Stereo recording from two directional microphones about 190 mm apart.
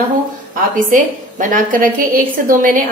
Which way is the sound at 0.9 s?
45° right (ahead or behind).